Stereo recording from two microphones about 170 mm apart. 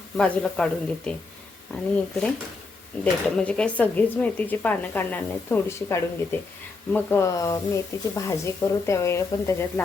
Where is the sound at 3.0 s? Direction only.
5° left (ahead or behind).